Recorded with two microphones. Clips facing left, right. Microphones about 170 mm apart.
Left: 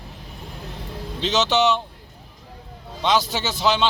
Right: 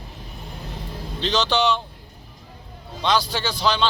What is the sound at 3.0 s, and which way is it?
Speech, 20° left (ahead or behind).